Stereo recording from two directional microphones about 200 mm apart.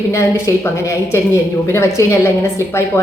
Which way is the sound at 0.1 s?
15° left (ahead or behind).